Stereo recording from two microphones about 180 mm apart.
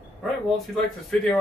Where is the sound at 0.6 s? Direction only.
Centre (ahead or behind).